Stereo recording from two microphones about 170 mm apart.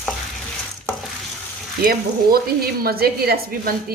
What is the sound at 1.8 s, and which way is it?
Speech, 60° right (ahead or behind).